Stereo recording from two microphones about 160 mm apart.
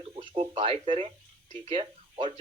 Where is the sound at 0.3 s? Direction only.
35° right (ahead or behind).